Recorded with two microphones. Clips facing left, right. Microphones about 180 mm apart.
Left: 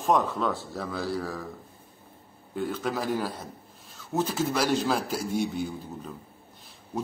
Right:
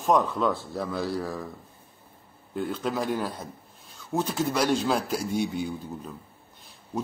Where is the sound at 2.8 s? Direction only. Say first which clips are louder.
Right 1 dB; 5° left (ahead or behind).